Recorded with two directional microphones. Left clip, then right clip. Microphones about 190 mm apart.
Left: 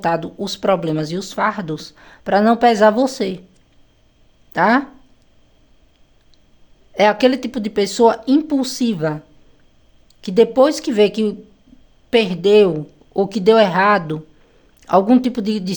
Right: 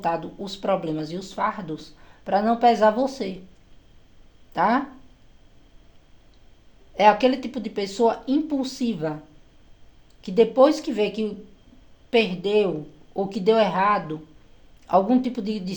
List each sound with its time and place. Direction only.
0.0 s speech: 35° left (ahead or behind)
4.5 s speech: 30° left (ahead or behind)
6.9 s speech: 30° left (ahead or behind)
10.2 s speech: 35° left (ahead or behind)